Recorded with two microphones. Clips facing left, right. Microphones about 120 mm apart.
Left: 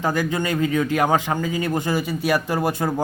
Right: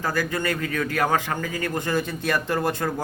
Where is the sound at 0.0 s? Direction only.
20° left (ahead or behind).